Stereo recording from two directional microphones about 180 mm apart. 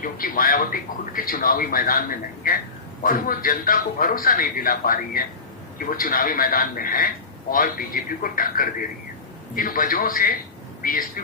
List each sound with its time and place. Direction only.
0.0 s speech: 50° left (ahead or behind)